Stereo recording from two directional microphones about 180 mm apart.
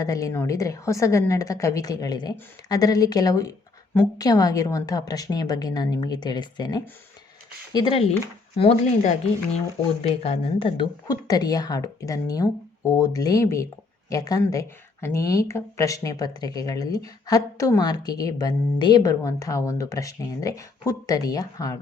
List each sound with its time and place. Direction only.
0.0 s speech: 20° left (ahead or behind)